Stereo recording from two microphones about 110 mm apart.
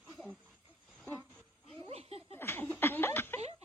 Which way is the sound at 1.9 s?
65° right (ahead or behind).